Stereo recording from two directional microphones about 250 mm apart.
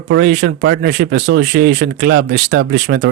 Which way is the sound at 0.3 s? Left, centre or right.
Right.